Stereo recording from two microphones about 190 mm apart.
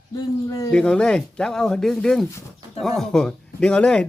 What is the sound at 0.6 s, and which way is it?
Speech, 5° left (ahead or behind).